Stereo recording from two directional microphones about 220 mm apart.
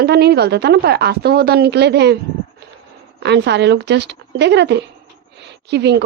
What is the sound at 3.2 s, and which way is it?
Speech, 50° right (ahead or behind).